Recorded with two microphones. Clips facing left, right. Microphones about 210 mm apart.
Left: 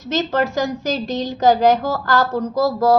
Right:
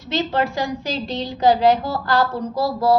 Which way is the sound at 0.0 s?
45° left (ahead or behind).